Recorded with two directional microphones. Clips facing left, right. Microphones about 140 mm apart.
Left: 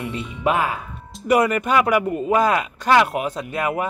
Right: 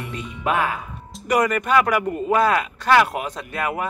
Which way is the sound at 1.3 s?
10° left (ahead or behind).